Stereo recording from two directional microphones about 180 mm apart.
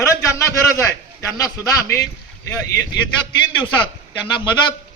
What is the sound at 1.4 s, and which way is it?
A man's voice, 20° left (ahead or behind).